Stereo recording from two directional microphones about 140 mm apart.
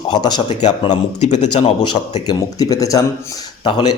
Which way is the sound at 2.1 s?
30° left (ahead or behind).